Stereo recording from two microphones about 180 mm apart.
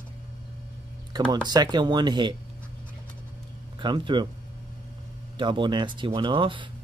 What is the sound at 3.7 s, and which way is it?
Speech, 25° right (ahead or behind).